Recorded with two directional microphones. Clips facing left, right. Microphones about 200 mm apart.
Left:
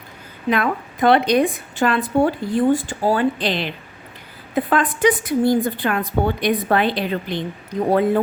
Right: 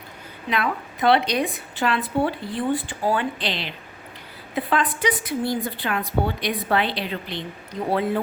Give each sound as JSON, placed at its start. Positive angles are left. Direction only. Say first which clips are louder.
{"t": 0.5, "sound": "a woman's voice", "louder": "left 4 dB", "side_deg": 50}